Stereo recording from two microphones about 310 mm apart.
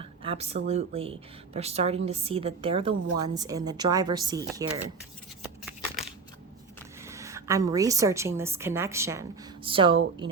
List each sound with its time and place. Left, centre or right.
0.0 s a woman's voice: centre
7.0 s a woman's voice: centre